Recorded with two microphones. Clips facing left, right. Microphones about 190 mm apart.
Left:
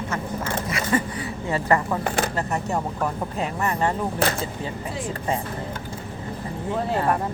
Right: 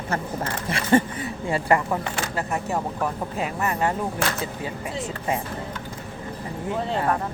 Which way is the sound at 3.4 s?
5° right (ahead or behind).